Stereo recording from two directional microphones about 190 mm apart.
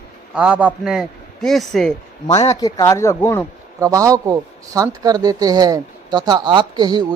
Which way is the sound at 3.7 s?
15° right (ahead or behind).